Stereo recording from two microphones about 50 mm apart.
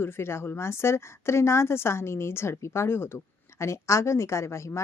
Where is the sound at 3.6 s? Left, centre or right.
Left.